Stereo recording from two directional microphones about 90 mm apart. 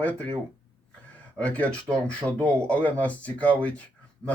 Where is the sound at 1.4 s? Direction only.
15° left (ahead or behind).